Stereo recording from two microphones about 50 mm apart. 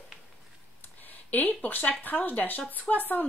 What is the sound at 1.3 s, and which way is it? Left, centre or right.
Speech, left.